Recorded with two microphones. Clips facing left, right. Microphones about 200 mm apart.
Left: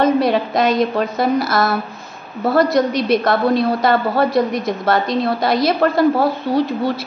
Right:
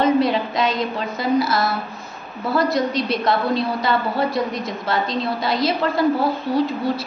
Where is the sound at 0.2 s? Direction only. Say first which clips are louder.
Left 3 dB; 60° left (ahead or behind).